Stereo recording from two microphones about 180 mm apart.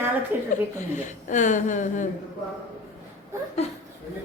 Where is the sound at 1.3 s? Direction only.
45° left (ahead or behind).